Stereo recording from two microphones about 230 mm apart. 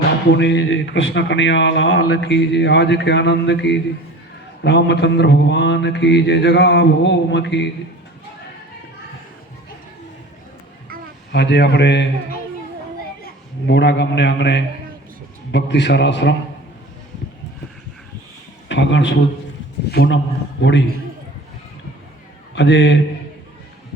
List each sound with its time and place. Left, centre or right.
0.3 s a man's voice: left
11.3 s a man's voice: left
13.7 s a man's voice: left
18.7 s a man's voice: left
22.5 s a man's voice: left